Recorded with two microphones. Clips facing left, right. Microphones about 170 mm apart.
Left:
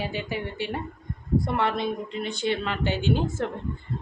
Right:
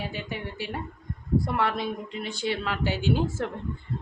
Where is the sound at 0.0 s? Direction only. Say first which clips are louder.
Left 4 dB; centre (ahead or behind).